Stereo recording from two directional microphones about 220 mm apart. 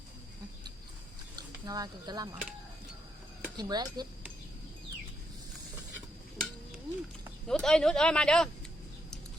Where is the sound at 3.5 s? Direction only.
20° right (ahead or behind).